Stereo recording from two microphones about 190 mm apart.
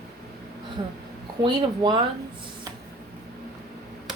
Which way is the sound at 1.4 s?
25° right (ahead or behind).